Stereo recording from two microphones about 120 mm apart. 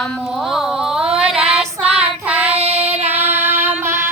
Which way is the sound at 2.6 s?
60° right (ahead or behind).